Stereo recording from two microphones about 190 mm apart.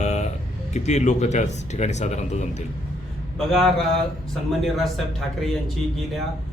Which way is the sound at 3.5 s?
Centre (ahead or behind).